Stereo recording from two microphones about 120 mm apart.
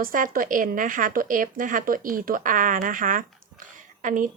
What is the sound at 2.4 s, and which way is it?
A woman's voice, 90° right.